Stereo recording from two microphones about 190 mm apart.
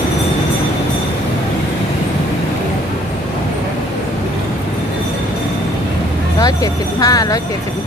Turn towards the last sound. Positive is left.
turn(degrees=20)  # may be behind; listen again after turning